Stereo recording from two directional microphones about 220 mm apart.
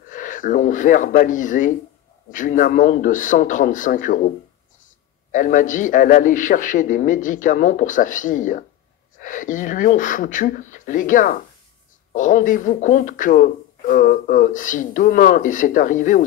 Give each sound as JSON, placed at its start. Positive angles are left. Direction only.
{"t": 0.1, "sound": "speech", "side_deg": 35}
{"t": 5.3, "sound": "speech", "side_deg": 35}